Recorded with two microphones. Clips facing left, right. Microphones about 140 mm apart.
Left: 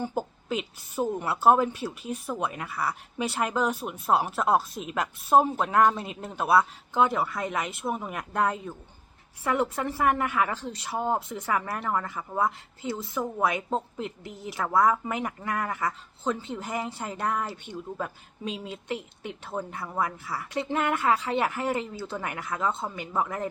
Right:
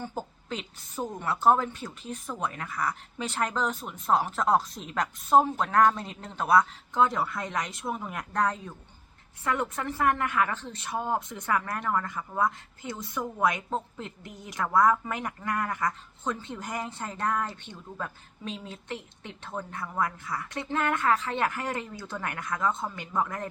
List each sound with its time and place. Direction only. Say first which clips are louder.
0.0 s a woman's voice: left 5 dB; 10° left (ahead or behind)
13.7 s speech: left 3 dB; 30° left (ahead or behind)
14.4 s a woman's voice: even; 5° left (ahead or behind)